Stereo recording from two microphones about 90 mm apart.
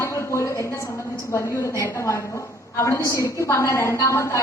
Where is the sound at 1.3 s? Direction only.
35° left (ahead or behind).